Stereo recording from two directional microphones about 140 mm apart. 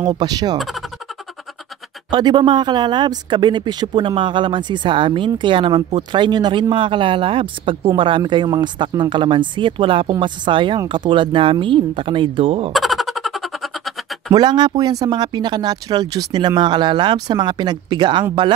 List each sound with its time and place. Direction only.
0.0 s speech: 30° right (ahead or behind)
2.0 s speech: 30° right (ahead or behind)
12.7 s a sound: centre (ahead or behind)
14.3 s speech: 30° right (ahead or behind)